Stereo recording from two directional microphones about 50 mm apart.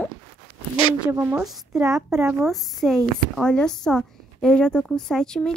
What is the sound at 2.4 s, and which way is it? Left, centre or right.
Speech, centre.